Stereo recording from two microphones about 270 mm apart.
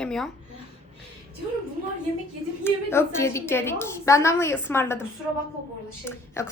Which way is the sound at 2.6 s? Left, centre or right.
Centre.